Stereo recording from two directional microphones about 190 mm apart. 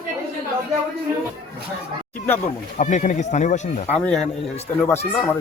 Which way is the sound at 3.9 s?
5° left (ahead or behind).